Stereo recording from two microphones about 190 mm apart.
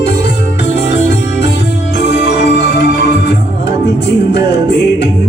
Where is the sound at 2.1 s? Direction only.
60° left (ahead or behind).